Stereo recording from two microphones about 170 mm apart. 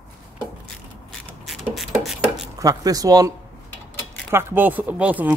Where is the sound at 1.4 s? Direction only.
Centre (ahead or behind).